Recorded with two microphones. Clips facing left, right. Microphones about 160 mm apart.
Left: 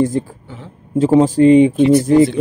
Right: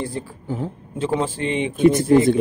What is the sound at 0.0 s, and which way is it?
A man's voice, 45° left (ahead or behind).